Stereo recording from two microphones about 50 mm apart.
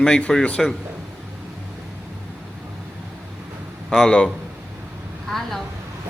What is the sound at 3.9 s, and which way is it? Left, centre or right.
Speech, centre.